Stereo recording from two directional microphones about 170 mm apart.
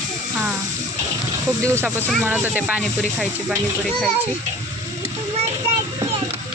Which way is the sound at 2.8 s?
5° left (ahead or behind).